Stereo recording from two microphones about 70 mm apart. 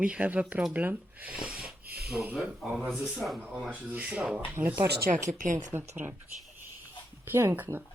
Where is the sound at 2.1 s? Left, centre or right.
Centre.